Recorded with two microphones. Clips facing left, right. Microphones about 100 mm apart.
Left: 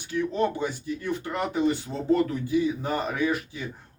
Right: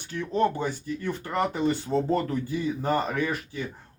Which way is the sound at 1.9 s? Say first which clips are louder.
Left 1 dB; 40° right (ahead or behind).